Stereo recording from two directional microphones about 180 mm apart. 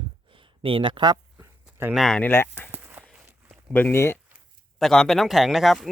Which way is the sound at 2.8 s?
10° right (ahead or behind).